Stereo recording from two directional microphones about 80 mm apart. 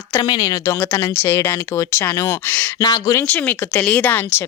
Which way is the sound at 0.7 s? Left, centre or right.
Left.